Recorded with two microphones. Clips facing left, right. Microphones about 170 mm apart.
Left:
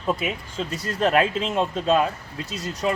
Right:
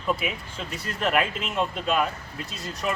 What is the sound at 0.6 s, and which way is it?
Speech, 30° left (ahead or behind).